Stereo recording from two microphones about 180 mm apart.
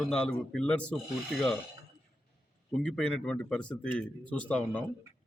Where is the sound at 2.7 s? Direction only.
5° left (ahead or behind).